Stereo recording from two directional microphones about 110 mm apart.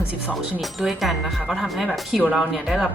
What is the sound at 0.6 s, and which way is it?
Speech, centre (ahead or behind).